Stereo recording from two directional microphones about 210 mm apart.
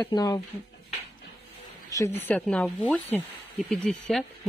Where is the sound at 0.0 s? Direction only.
20° left (ahead or behind).